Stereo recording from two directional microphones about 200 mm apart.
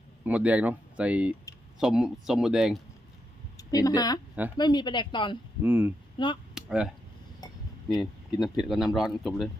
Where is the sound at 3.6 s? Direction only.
15° left (ahead or behind).